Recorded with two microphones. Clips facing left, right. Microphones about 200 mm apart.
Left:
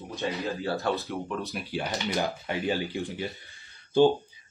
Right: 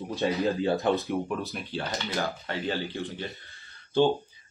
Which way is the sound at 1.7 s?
15° left (ahead or behind).